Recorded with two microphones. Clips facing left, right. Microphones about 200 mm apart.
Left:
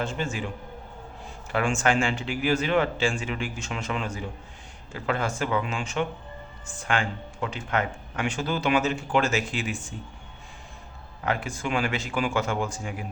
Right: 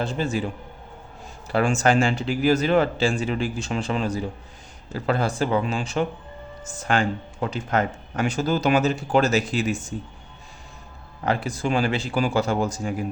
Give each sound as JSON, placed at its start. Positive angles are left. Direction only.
{"t": 0.0, "sound": "speech", "side_deg": -35}
{"t": 1.5, "sound": "speech", "side_deg": -40}
{"t": 11.2, "sound": "speech", "side_deg": -35}